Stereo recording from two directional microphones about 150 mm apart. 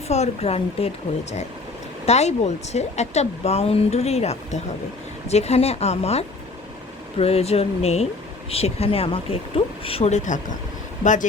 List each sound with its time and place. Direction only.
0.1 s speech: 45° left (ahead or behind)
2.0 s speech: 45° left (ahead or behind)